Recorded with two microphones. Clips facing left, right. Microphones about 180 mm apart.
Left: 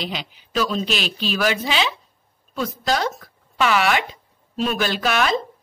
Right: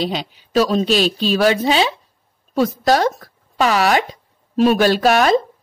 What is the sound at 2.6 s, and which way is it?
A woman's voice, 40° right (ahead or behind).